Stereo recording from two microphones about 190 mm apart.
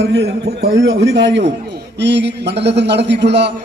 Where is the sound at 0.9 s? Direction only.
75° right (ahead or behind).